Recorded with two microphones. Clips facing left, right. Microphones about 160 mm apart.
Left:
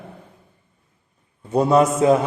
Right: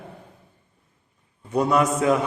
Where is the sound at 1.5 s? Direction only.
30° left (ahead or behind).